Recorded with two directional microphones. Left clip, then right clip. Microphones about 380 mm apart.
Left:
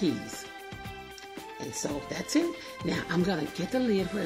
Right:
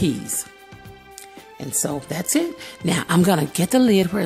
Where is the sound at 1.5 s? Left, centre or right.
Right.